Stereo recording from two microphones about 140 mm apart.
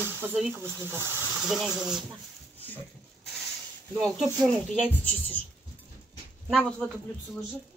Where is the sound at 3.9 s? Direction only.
5° left (ahead or behind).